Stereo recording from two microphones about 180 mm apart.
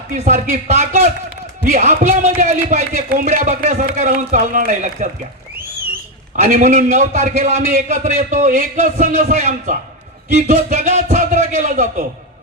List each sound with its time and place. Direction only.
0.1 s speech: 45° right (ahead or behind)
6.3 s a man's voice: 45° right (ahead or behind)